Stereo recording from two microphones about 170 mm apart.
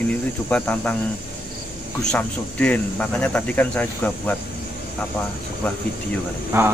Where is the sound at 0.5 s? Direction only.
10° left (ahead or behind).